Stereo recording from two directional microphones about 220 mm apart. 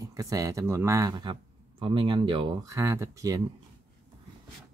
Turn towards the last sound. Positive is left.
turn(degrees=-15)  # may be behind; listen again after turning